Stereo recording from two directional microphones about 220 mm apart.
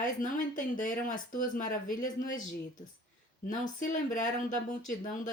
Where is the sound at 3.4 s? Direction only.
35° left (ahead or behind).